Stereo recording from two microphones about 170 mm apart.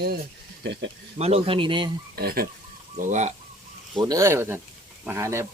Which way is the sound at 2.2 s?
65° right (ahead or behind).